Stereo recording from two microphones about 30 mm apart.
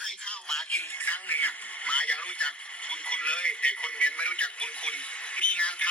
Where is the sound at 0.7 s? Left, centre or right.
Left.